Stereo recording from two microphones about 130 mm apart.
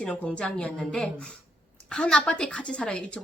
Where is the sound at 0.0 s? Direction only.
10° left (ahead or behind).